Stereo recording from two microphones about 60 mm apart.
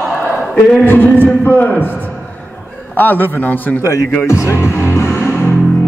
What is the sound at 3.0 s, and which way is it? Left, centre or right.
Speech, left.